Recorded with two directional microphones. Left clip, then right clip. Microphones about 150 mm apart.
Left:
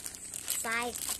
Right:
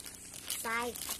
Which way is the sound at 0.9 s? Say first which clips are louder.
Left 2 dB; 10° left (ahead or behind).